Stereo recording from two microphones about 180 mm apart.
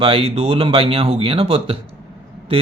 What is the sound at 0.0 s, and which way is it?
Speech, 30° right (ahead or behind).